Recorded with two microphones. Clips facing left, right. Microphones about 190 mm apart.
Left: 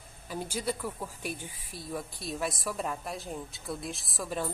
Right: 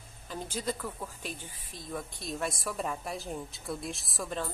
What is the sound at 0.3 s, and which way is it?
Speech, 10° left (ahead or behind).